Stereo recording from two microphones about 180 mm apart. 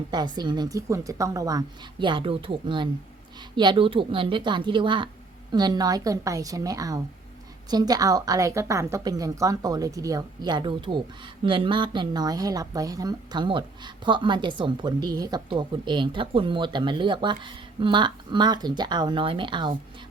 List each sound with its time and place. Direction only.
0.1 s a woman's voice: 25° right (ahead or behind)